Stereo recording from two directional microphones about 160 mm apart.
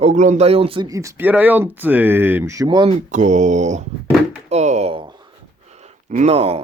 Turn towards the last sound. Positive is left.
turn(degrees=-40)  # may be behind; listen again after turning